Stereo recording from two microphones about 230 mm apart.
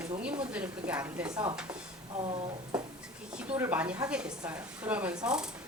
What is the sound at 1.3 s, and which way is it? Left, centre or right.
Speech, centre.